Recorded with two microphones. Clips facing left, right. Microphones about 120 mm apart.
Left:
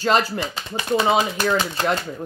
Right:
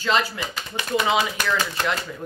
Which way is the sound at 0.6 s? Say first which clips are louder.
Left 2 dB; 25° left (ahead or behind).